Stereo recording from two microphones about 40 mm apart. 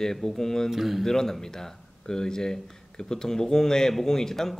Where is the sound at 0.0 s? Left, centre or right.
Centre.